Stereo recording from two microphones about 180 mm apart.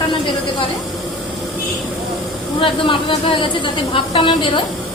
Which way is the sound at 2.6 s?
30° left (ahead or behind).